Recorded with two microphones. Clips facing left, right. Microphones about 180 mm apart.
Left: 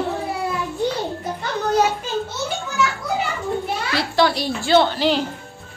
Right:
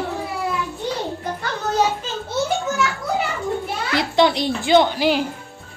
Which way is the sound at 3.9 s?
20° right (ahead or behind).